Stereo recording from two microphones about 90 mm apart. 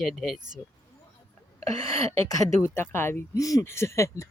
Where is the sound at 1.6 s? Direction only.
35° left (ahead or behind).